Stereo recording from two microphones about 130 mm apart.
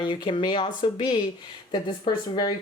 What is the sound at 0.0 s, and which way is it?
Speech, 40° left (ahead or behind).